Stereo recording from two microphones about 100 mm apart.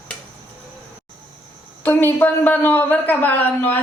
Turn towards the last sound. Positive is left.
turn(degrees=20)  # may be behind; listen again after turning